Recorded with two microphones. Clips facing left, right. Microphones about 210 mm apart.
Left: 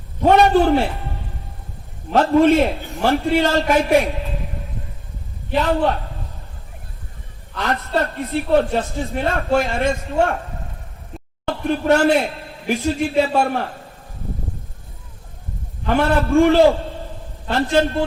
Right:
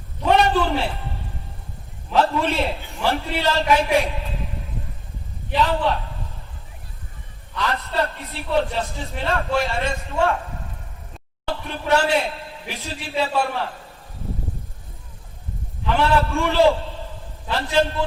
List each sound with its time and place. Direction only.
0.2 s a man's voice: 50° left (ahead or behind)
2.1 s a man's voice: 50° left (ahead or behind)
5.5 s a man's voice: 50° left (ahead or behind)
7.5 s a man's voice: 50° left (ahead or behind)
11.4 s a man's voice: 50° left (ahead or behind)
15.9 s a man's voice: 50° left (ahead or behind)